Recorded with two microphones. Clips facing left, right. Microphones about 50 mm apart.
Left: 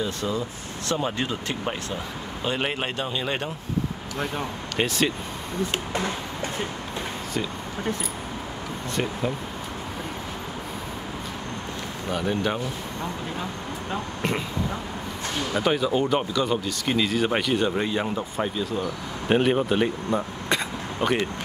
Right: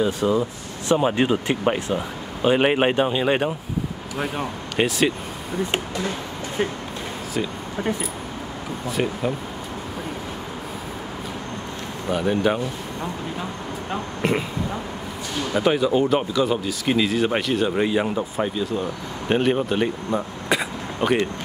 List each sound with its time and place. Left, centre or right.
0.0 s speech: centre
4.2 s speech: centre
8.9 s speech: centre
12.1 s speech: centre